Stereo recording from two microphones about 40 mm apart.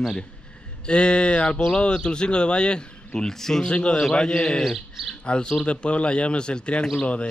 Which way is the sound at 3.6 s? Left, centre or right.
Left.